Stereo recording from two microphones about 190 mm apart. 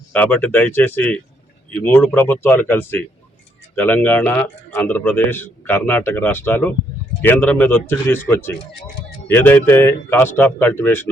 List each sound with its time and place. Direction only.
0.1 s a man's voice: 10° left (ahead or behind)
8.5 s speech: 60° left (ahead or behind)
9.2 s a man's voice: 10° left (ahead or behind)